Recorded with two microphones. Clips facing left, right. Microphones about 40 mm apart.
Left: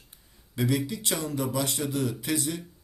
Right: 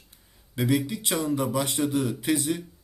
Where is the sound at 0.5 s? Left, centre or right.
Centre.